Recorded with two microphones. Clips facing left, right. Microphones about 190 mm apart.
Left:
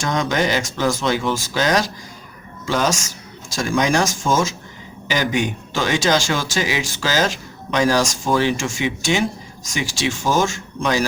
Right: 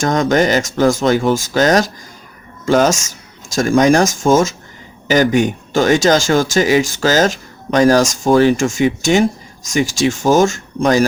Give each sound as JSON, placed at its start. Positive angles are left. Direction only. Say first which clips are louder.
{"t": 0.0, "sound": "speech", "louder": "right 6 dB", "side_deg": -45}